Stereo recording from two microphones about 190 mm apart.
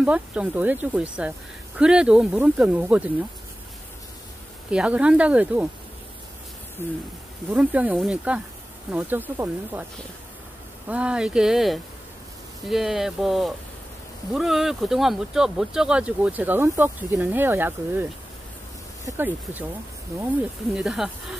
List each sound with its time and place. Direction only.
0.0 s speech: 5° right (ahead or behind)
4.6 s speech: 5° right (ahead or behind)
7.4 s speech: 10° right (ahead or behind)
10.9 s speech: 5° right (ahead or behind)
19.0 s speech: 10° right (ahead or behind)
20.7 s speech: 5° right (ahead or behind)